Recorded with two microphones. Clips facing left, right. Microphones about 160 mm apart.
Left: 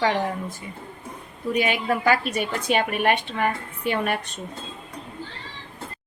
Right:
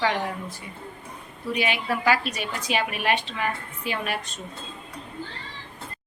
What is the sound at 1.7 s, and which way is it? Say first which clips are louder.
A woman's voice: left 1 dB; 45° left (ahead or behind).